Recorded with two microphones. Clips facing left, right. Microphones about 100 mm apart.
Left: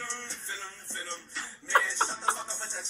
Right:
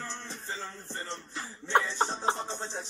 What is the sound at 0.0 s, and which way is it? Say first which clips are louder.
Music: right 1 dB; 35° right (ahead or behind).